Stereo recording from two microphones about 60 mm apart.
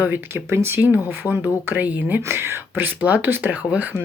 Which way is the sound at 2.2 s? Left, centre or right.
Right.